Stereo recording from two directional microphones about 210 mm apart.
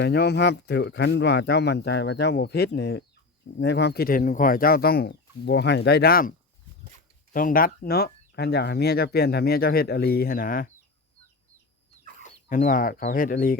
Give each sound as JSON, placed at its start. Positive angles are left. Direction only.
{"t": 0.0, "sound": "speech", "side_deg": 55}
{"t": 7.3, "sound": "speech", "side_deg": 40}
{"t": 12.2, "sound": "speech", "side_deg": 40}